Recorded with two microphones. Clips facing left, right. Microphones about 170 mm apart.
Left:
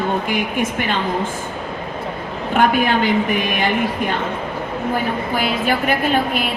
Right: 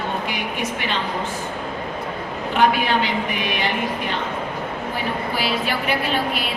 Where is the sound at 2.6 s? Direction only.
50° left (ahead or behind).